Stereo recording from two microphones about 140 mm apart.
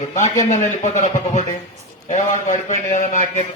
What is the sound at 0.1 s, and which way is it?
A man's voice, 60° left (ahead or behind).